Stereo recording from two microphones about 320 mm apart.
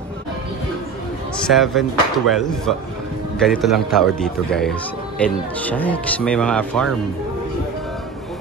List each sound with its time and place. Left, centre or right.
1.5 s speech: centre